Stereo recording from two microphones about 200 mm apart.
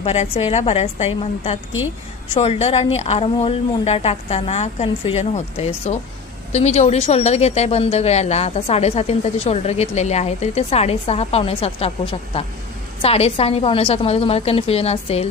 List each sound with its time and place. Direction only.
0.0 s a woman's voice: 30° left (ahead or behind)